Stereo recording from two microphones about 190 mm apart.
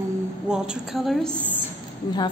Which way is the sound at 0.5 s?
Centre (ahead or behind).